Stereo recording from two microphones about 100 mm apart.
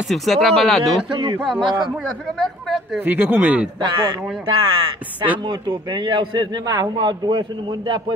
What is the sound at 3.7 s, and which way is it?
Speech, 40° right (ahead or behind).